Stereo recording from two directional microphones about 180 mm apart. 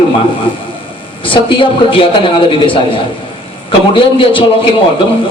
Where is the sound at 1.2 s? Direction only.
30° left (ahead or behind).